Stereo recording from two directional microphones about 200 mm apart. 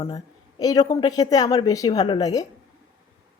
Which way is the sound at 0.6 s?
20° left (ahead or behind).